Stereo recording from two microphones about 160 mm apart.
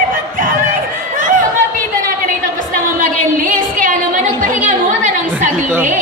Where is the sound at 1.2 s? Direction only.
55° right (ahead or behind).